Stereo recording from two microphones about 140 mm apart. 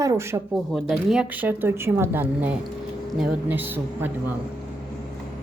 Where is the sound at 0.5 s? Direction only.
Centre (ahead or behind).